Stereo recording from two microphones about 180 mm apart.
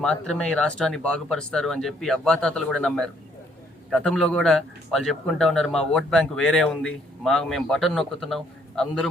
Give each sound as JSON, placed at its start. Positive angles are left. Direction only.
{"t": 0.0, "sound": "speech", "side_deg": 5}